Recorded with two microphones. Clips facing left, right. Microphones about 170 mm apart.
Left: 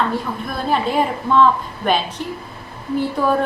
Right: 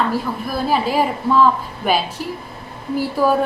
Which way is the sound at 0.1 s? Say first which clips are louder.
Right 2 dB; 5° right (ahead or behind).